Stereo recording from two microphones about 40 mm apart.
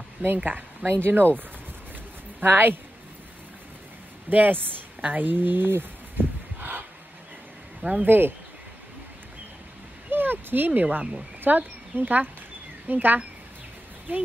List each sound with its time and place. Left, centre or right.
0.4 s speech: right
1.0 s speech: right
2.4 s speech: right
4.3 s speech: right
5.0 s a sound: right
7.8 s speech: right
8.1 s speech: right
10.1 s speech: right